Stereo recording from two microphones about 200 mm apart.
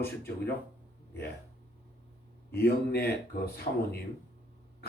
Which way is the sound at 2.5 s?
50° left (ahead or behind).